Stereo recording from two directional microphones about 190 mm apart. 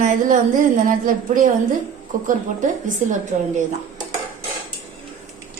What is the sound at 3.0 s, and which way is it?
Speech, 40° right (ahead or behind).